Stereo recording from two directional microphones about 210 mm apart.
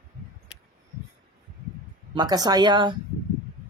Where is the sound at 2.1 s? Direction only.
20° right (ahead or behind).